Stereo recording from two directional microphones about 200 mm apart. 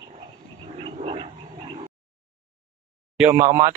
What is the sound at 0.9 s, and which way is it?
Wild animals, 30° right (ahead or behind).